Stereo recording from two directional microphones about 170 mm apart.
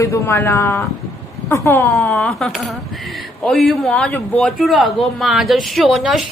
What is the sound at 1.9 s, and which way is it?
A man's voice, 5° left (ahead or behind).